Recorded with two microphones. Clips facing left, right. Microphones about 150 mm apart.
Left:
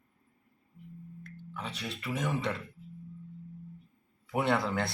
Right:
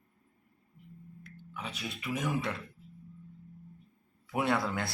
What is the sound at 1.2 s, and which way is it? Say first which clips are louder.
Speech: left 1 dB; 10° right (ahead or behind).